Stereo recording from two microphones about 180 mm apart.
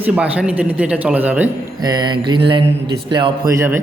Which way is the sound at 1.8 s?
25° right (ahead or behind).